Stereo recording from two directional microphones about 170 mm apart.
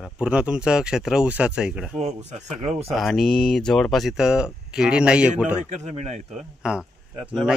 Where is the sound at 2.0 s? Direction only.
40° right (ahead or behind).